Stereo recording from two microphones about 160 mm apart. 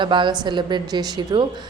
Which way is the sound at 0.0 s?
30° right (ahead or behind).